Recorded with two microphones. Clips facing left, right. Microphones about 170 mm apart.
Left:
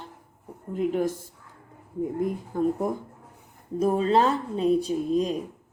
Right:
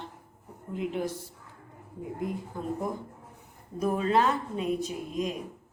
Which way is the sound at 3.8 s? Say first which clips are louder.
Left 4 dB; 30° left (ahead or behind).